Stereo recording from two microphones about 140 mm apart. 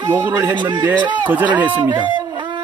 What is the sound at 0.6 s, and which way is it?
Speech, 35° right (ahead or behind).